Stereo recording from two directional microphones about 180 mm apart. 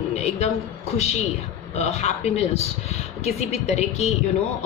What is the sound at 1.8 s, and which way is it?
A woman's voice, 40° left (ahead or behind).